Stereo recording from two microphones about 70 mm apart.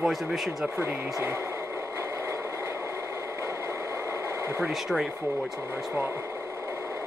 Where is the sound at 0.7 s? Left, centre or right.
Right.